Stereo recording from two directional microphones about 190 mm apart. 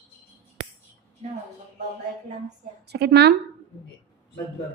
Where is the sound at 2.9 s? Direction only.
60° right (ahead or behind).